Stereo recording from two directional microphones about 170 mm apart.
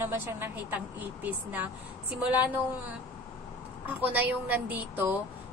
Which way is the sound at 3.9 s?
10° right (ahead or behind).